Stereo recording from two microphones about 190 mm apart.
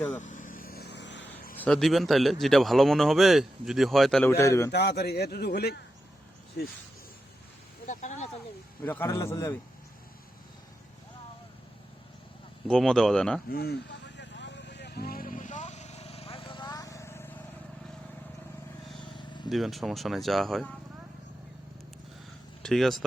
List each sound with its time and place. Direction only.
0.2 s vehicle: 45° left (ahead or behind); by 1.3 s 70° left (ahead or behind)
1.5 s a man's voice: 5° left (ahead or behind)
4.3 s a man's voice: 15° left (ahead or behind)
4.7 s a man's voice: 60° left (ahead or behind)
7.9 s speech: 40° left (ahead or behind)
8.8 s a man's voice: 10° left (ahead or behind)
12.6 s a man's voice: 5° left (ahead or behind)
13.5 s vehicle: 55° left (ahead or behind); by 17.3 s 15° left (ahead or behind)
19.5 s a man's voice: centre (ahead or behind)
22.6 s speech: centre (ahead or behind)